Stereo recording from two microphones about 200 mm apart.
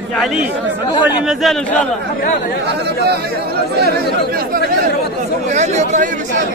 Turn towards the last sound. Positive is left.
turn(degrees=-35)  # may be behind; listen again after turning